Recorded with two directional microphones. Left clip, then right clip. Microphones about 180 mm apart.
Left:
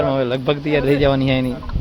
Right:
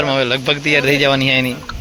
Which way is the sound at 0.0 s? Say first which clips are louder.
Right 2 dB; 10° left (ahead or behind).